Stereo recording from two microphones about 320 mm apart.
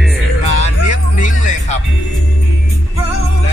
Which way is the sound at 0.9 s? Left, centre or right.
Left.